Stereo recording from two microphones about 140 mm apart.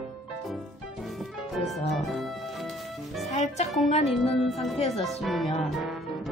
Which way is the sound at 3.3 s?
50° left (ahead or behind).